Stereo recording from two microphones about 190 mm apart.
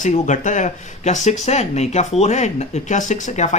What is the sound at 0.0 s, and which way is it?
A man's voice, 40° left (ahead or behind).